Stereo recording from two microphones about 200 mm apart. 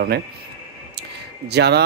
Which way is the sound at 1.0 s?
55° right (ahead or behind).